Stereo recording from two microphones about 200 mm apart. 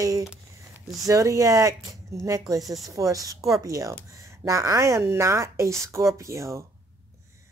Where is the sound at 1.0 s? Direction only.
15° right (ahead or behind).